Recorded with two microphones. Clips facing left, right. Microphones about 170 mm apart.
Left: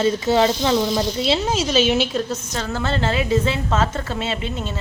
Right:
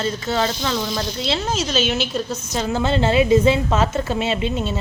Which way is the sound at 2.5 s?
15° right (ahead or behind).